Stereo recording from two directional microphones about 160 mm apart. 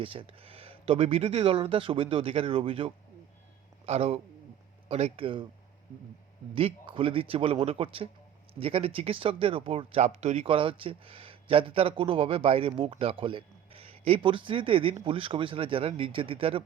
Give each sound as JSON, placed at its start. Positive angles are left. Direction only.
{"t": 0.0, "sound": "speech", "side_deg": -35}
{"t": 6.5, "sound": "speech", "side_deg": -35}